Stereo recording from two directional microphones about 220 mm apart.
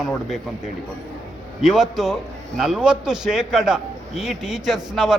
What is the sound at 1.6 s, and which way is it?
A man's voice, centre (ahead or behind).